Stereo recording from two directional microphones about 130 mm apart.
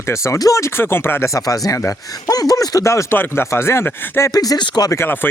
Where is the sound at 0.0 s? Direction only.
20° left (ahead or behind).